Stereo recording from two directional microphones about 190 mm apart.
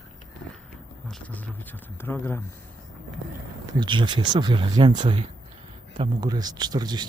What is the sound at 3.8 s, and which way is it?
Speech, 25° right (ahead or behind).